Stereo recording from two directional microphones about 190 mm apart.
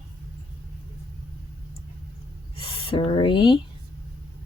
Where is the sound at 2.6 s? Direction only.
25° left (ahead or behind).